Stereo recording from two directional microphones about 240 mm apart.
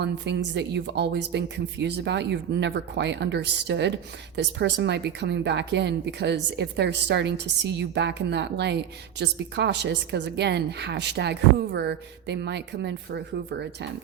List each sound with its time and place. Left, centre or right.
0.0 s speech: right